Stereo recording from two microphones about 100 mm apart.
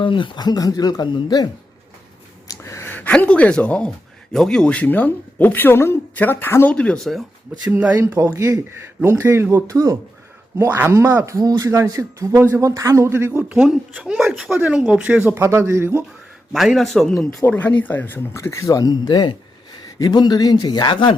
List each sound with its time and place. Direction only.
0.0 s speech: 55° left (ahead or behind)
2.5 s gasp: 30° left (ahead or behind)
2.9 s speech: 15° left (ahead or behind)
6.7 s speech: 10° left (ahead or behind)
7.7 s speech: 15° right (ahead or behind)
11.3 s speech: 40° right (ahead or behind)
13.5 s speech: 5° right (ahead or behind); by 16.0 s 25° right (ahead or behind)
16.5 s speech: centre (ahead or behind)
17.4 s speech: 15° left (ahead or behind); by 21.2 s 55° left (ahead or behind)